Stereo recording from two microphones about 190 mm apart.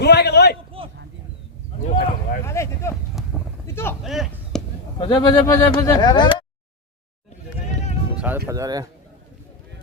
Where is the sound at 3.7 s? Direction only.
10° left (ahead or behind).